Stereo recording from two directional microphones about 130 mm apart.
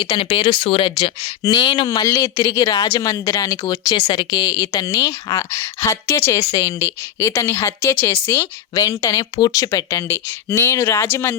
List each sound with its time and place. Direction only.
0.1 s speech: 45° left (ahead or behind)
2.0 s speech: 20° left (ahead or behind)